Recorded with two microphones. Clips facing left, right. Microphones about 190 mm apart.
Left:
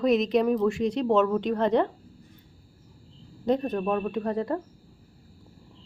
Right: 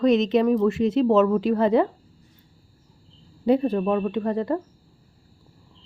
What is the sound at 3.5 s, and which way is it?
Speech, 10° right (ahead or behind).